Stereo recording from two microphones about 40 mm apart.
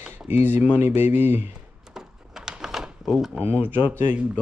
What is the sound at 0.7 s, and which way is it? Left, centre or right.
Mantra, right.